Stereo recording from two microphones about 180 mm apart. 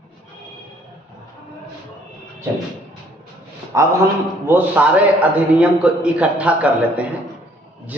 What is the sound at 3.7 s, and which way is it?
A man's voice, 15° right (ahead or behind).